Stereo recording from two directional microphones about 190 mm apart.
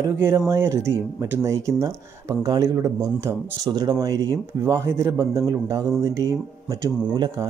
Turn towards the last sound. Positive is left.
turn(degrees=-20)  # may be behind; listen again after turning